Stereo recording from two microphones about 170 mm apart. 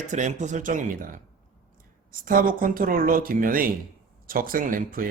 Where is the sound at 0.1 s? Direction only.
45° right (ahead or behind).